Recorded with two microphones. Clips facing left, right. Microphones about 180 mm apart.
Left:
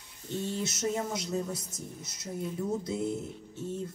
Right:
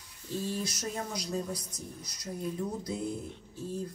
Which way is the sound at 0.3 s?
25° left (ahead or behind).